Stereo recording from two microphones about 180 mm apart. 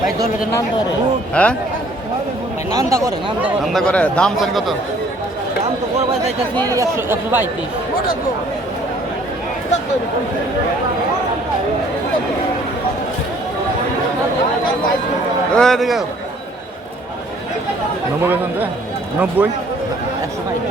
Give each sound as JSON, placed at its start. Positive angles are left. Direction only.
{"t": 1.3, "sound": "speech", "side_deg": 5}
{"t": 2.7, "sound": "speech", "side_deg": -20}
{"t": 3.7, "sound": "a man's voice", "side_deg": 5}
{"t": 6.7, "sound": "speech", "side_deg": -15}
{"t": 15.5, "sound": "a man's voice", "side_deg": 0}
{"t": 18.2, "sound": "speech", "side_deg": -10}